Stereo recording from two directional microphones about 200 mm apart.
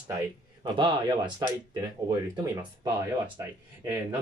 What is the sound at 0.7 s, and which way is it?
Speech, 20° right (ahead or behind).